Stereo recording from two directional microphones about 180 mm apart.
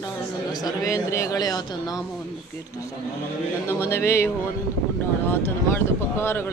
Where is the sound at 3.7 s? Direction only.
15° left (ahead or behind).